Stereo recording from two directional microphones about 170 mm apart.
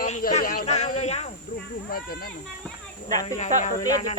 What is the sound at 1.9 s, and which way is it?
Speech, 60° left (ahead or behind).